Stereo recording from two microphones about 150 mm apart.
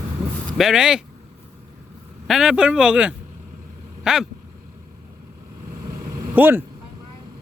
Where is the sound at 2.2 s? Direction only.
Centre (ahead or behind).